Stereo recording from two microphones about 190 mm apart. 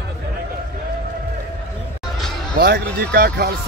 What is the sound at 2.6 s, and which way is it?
Speech, 55° right (ahead or behind).